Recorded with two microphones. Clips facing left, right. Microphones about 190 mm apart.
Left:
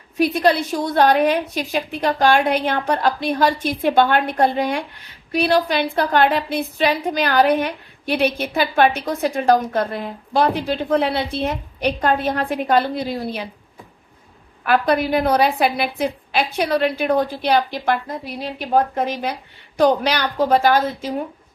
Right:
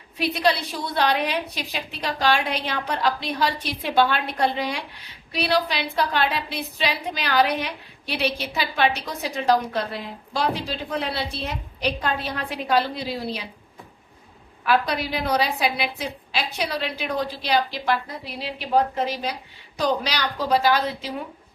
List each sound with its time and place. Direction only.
0.2 s a woman's voice: 50° left (ahead or behind)
14.6 s a woman's voice: 50° left (ahead or behind)